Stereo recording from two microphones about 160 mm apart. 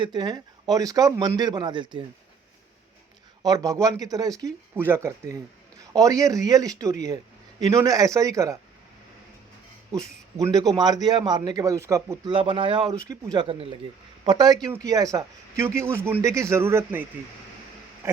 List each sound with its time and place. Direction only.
0.0 s speech: 25° right (ahead or behind)
3.4 s speech: 20° right (ahead or behind)
10.3 s speech: 20° right (ahead or behind)
12.3 s speech: 35° right (ahead or behind)
13.0 s a man's voice: 25° right (ahead or behind)
18.0 s a sound: 15° right (ahead or behind)